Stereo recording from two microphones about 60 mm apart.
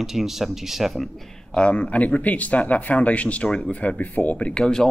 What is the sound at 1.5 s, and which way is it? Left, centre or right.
Speech, left.